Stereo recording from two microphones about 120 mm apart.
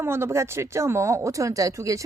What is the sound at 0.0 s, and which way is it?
Speech, 20° right (ahead or behind).